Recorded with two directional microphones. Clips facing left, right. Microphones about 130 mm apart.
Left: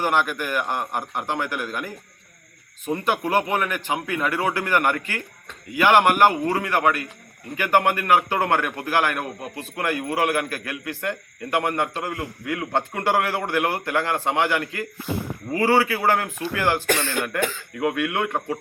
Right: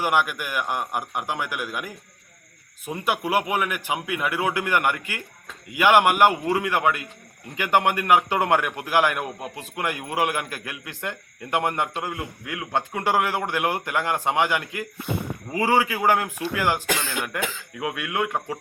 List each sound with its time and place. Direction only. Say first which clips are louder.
0.0 s a man's voice: left 1 dB; 10° right (ahead or behind)